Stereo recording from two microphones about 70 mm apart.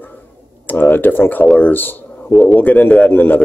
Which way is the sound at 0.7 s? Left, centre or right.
Left.